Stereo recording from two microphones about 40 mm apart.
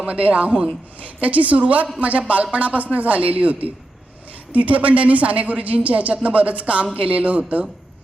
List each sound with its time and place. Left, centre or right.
0.2 s a man's voice: right